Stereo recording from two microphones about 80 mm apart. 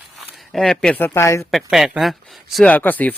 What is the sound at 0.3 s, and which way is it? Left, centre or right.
Speech, centre.